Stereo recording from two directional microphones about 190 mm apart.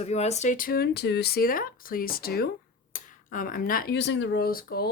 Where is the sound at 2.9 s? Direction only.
45° left (ahead or behind).